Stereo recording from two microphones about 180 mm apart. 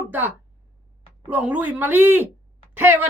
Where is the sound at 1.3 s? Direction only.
10° right (ahead or behind).